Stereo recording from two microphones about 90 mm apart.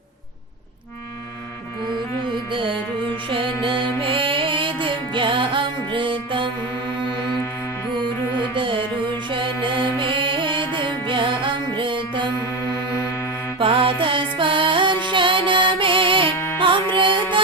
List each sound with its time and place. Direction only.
2.5 s music: 70° right (ahead or behind)
8.4 s music: 70° right (ahead or behind)
13.6 s music: 80° right